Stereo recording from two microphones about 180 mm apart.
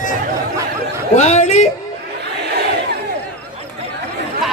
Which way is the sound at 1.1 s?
40° left (ahead or behind).